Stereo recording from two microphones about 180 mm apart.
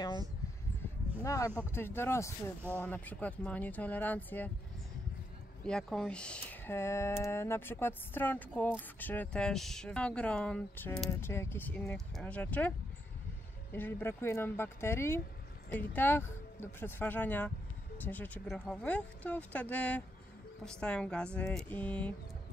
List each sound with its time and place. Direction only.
1.2 s speech: 20° left (ahead or behind)
5.7 s speech: 5° left (ahead or behind)